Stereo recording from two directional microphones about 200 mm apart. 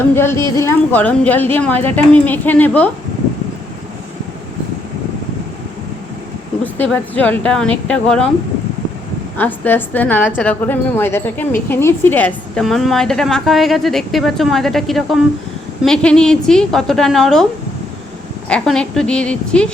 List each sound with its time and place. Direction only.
0.2 s a woman's voice: 10° left (ahead or behind)
6.7 s a woman's voice: 10° left (ahead or behind)
9.4 s a woman's voice: 10° left (ahead or behind)
18.4 s a woman's voice: 5° left (ahead or behind)